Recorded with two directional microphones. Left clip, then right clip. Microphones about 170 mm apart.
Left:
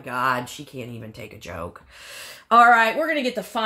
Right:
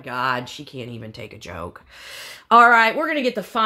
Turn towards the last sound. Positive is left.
turn(degrees=-65)  # may be behind; listen again after turning